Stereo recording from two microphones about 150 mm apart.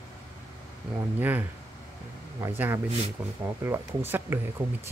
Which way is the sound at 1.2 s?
10° right (ahead or behind).